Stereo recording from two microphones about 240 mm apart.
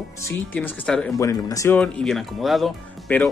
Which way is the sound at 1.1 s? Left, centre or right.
Centre.